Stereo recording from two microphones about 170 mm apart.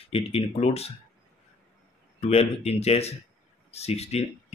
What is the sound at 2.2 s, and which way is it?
Speech, 40° left (ahead or behind).